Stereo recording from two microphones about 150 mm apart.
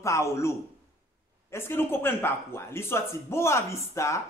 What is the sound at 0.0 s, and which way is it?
Speech, 20° left (ahead or behind).